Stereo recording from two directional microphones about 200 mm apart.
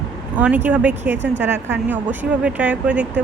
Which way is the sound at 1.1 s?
60° right (ahead or behind).